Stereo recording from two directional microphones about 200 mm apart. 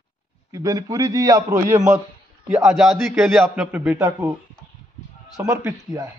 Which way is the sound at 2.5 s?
Centre (ahead or behind).